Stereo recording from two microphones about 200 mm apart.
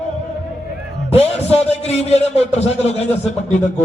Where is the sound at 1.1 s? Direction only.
30° left (ahead or behind).